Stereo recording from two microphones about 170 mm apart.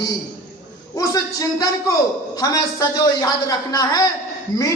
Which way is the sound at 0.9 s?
20° left (ahead or behind).